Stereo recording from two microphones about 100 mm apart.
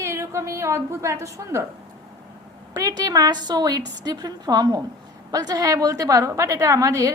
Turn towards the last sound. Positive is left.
turn(degrees=-35)  # may be behind; listen again after turning